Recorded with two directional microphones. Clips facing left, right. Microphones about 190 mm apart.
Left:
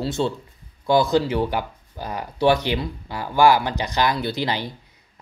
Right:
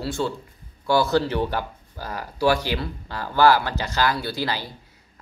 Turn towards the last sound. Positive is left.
turn(degrees=20)  # may be behind; listen again after turning